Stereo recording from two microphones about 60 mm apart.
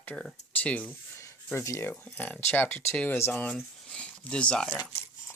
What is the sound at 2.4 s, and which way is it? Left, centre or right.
Speech, left.